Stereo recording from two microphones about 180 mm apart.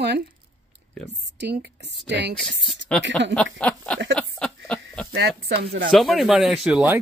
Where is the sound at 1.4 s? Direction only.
70° right (ahead or behind).